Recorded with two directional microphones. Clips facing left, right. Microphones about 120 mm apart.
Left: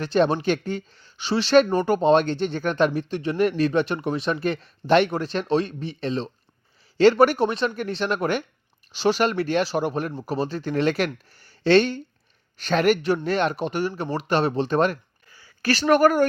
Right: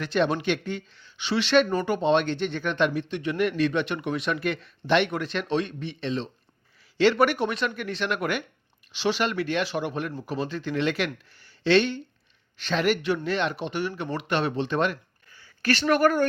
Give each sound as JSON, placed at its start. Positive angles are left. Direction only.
{"t": 0.0, "sound": "speech", "side_deg": 35}